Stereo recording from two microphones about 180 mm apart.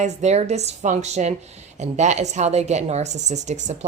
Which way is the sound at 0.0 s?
40° right (ahead or behind).